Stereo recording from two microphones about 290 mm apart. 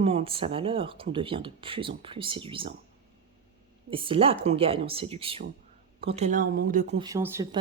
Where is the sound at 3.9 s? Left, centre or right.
Centre.